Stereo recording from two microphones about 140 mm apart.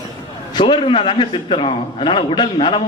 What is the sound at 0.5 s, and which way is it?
A man's voice, 35° left (ahead or behind).